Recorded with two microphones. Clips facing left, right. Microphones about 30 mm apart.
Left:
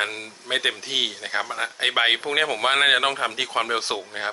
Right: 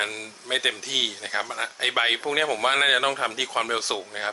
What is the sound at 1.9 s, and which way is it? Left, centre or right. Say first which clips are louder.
Speech: left 2 dB; centre.